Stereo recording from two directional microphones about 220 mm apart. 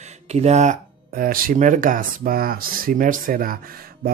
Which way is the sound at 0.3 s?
30° right (ahead or behind).